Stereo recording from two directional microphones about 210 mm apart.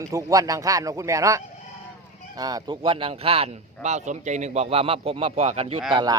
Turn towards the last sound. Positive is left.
turn(degrees=-20)  # may be behind; listen again after turning